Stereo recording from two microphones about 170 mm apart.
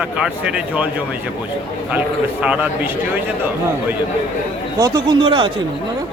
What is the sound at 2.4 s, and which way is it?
Speech, 10° right (ahead or behind).